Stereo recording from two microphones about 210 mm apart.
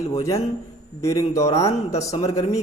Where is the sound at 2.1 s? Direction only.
30° left (ahead or behind).